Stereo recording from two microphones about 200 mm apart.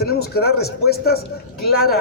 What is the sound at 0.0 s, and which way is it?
A man's voice, 50° left (ahead or behind).